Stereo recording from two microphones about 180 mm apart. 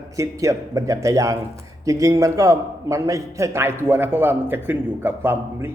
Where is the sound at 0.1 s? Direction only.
15° right (ahead or behind).